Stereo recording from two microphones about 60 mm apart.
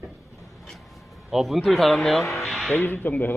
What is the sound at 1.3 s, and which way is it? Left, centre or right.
Speech, centre.